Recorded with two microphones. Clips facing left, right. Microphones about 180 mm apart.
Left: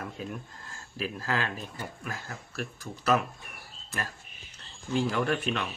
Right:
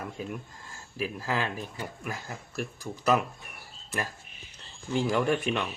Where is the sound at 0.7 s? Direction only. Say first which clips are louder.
Right 1 dB; 15° right (ahead or behind).